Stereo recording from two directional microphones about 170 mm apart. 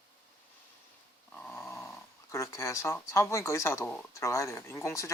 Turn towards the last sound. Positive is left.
turn(degrees=15)  # may be behind; listen again after turning